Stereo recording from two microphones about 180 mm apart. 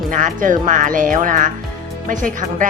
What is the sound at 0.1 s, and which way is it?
Speech, 45° right (ahead or behind).